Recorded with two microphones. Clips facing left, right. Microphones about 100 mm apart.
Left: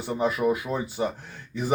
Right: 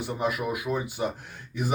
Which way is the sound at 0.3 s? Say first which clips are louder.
Left 6 dB; 25° left (ahead or behind).